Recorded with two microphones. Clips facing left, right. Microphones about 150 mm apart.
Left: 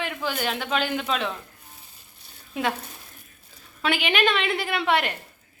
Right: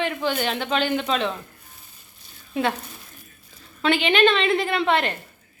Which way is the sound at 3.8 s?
10° left (ahead or behind).